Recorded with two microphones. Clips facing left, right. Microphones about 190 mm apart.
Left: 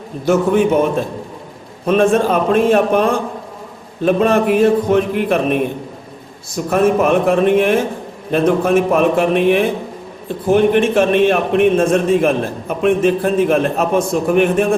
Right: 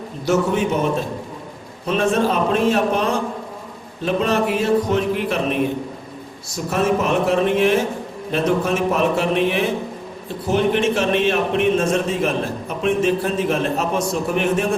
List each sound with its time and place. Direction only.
0.3 s a man's voice: 55° left (ahead or behind)
1.9 s a man's voice: 55° left (ahead or behind)
6.7 s a man's voice: 55° left (ahead or behind)